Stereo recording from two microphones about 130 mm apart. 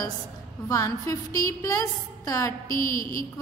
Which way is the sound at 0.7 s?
25° left (ahead or behind).